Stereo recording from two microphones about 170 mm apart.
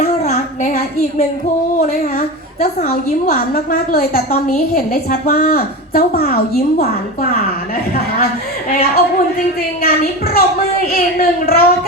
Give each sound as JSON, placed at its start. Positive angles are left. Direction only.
{"t": 0.0, "sound": "a sound", "side_deg": 45}
{"t": 1.9, "sound": "a woman's voice", "side_deg": 55}
{"t": 8.7, "sound": "a woman's voice", "side_deg": 60}